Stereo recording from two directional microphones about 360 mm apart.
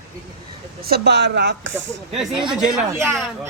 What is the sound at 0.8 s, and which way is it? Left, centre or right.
Speech, right.